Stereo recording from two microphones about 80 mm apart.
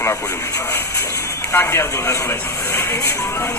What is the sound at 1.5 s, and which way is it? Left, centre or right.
Speech, left.